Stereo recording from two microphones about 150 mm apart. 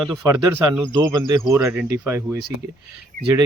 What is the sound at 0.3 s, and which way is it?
Speech, 20° right (ahead or behind).